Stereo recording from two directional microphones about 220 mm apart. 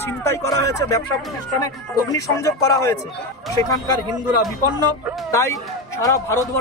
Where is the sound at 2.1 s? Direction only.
15° left (ahead or behind).